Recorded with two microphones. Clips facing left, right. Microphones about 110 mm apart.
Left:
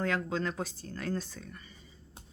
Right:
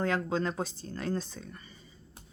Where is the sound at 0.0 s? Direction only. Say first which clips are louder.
Right 2 dB; 30° right (ahead or behind).